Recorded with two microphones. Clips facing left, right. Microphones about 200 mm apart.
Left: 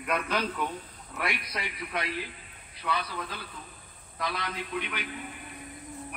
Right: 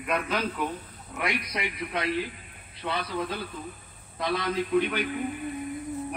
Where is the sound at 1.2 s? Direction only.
20° right (ahead or behind).